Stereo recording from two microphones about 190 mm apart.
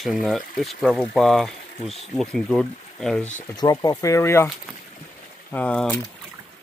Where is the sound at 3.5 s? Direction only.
20° left (ahead or behind).